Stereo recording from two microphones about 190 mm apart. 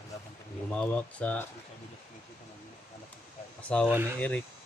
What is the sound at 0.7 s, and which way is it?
Speech, 5° left (ahead or behind).